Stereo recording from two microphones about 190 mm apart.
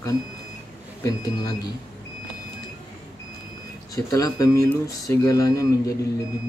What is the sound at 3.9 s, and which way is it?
Speech, 20° left (ahead or behind).